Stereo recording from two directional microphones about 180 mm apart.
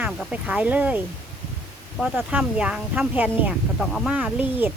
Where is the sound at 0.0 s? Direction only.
5° right (ahead or behind).